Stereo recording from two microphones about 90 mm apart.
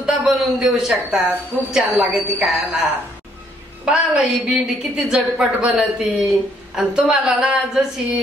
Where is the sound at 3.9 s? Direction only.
10° right (ahead or behind).